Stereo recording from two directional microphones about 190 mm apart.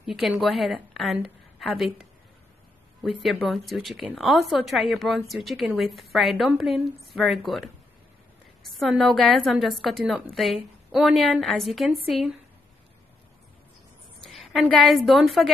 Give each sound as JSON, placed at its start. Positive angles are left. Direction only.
{"t": 0.0, "sound": "a woman's voice", "side_deg": 0}
{"t": 14.2, "sound": "a woman's voice", "side_deg": 0}